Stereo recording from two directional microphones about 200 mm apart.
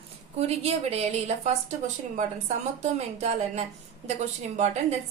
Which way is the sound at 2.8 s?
35° right (ahead or behind).